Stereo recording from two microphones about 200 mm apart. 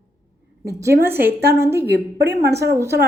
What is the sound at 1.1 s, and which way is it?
Speech, 10° right (ahead or behind).